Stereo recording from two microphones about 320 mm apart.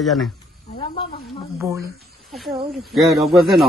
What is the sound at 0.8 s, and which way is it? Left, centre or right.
Snake, centre.